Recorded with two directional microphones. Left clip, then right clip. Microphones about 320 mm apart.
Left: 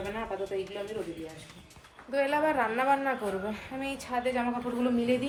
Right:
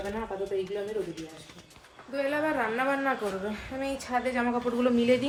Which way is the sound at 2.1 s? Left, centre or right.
Centre.